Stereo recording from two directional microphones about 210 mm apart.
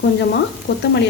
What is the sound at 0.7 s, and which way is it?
Frying, 50° left (ahead or behind).